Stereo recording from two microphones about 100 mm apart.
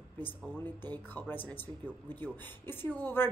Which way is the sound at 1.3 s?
20° left (ahead or behind).